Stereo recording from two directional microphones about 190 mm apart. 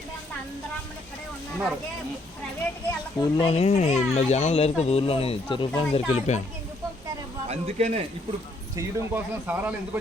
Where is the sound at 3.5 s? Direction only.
35° left (ahead or behind).